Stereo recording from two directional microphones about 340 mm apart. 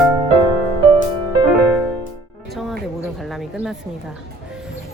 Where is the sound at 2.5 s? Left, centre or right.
Centre.